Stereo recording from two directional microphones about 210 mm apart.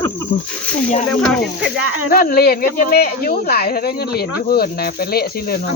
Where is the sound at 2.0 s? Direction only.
45° left (ahead or behind).